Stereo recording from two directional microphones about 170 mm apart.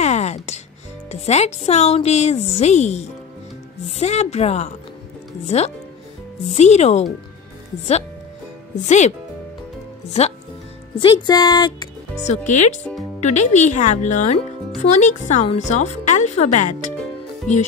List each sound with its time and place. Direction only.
0.0 s music: 40° left (ahead or behind)
1.2 s speech: 40° left (ahead or behind)
8.7 s speech: 45° left (ahead or behind)
11.0 s speech: 25° left (ahead or behind)
12.3 s speech: 45° left (ahead or behind)